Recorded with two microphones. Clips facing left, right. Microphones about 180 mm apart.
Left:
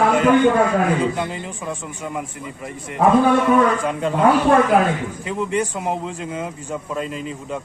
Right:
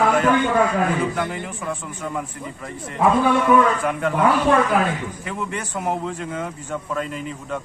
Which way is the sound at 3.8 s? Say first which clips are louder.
Left 1 dB; 20° left (ahead or behind).